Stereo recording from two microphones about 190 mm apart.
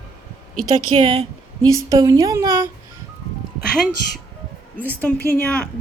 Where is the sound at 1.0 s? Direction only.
25° right (ahead or behind).